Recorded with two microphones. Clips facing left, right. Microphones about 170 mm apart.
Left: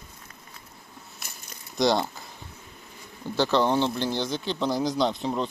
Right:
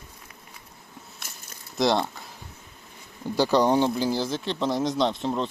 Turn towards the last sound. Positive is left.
turn(degrees=0)  # may be behind; listen again after turning